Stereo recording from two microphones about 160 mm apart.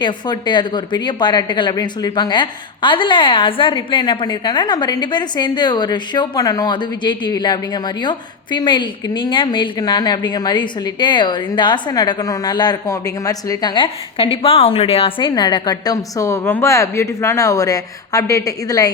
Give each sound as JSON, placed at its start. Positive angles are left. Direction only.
{"t": 0.0, "sound": "speech", "side_deg": 30}